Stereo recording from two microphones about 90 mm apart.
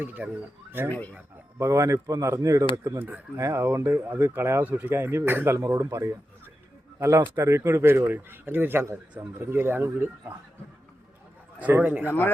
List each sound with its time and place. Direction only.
0.0 s speech: 20° right (ahead or behind)
0.9 s speech: 20° left (ahead or behind)
1.5 s speech: 35° right (ahead or behind)
5.5 s speech: 35° right (ahead or behind)
7.3 s speech: 30° right (ahead or behind)
11.6 s speech: 20° right (ahead or behind)